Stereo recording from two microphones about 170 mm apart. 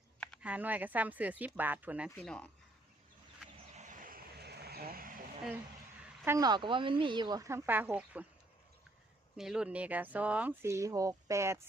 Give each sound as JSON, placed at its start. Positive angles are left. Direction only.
{"t": 0.4, "sound": "speech", "side_deg": -10}
{"t": 2.2, "sound": "speech", "side_deg": 5}
{"t": 3.8, "sound": "vehicle", "side_deg": -50}
{"t": 6.2, "sound": "speech", "side_deg": -20}
{"t": 9.4, "sound": "speech", "side_deg": -5}